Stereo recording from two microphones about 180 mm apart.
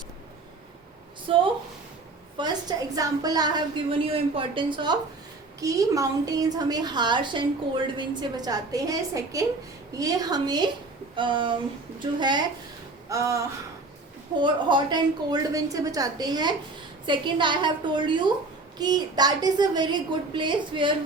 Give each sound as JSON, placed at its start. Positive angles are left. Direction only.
{"t": 1.3, "sound": "a woman's voice", "side_deg": -30}
{"t": 13.1, "sound": "a sound", "side_deg": -20}
{"t": 14.3, "sound": "a woman's voice", "side_deg": -25}